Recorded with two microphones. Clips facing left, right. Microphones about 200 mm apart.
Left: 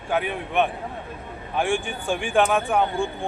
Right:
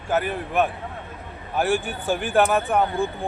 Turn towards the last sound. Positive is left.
turn(degrees=0)  # may be behind; listen again after turning